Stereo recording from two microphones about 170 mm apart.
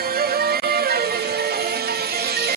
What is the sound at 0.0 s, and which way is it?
Music, 65° right (ahead or behind).